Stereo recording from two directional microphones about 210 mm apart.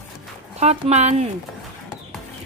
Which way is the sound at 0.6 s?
30° right (ahead or behind).